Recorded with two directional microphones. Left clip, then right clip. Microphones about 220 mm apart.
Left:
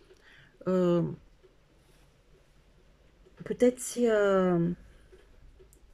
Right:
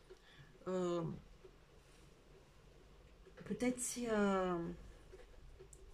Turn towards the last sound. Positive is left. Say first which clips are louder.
# left 12 dB
turn(degrees=40)  # may be behind; listen again after turning